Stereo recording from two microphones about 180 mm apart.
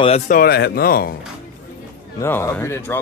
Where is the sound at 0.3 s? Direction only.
55° left (ahead or behind).